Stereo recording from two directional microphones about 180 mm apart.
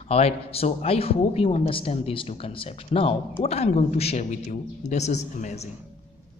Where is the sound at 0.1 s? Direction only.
35° left (ahead or behind).